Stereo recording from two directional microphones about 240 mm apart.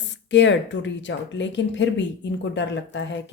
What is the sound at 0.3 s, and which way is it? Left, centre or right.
Speech, left.